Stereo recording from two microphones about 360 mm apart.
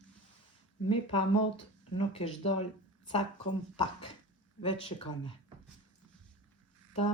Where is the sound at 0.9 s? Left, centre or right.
Centre.